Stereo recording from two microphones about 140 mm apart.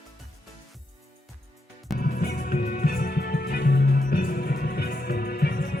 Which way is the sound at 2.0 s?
90° left.